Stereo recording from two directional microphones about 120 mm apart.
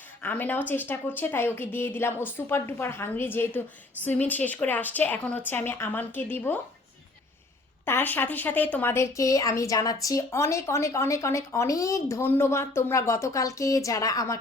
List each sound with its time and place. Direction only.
0.2 s a woman's voice: 15° left (ahead or behind)
7.9 s speech: 15° left (ahead or behind)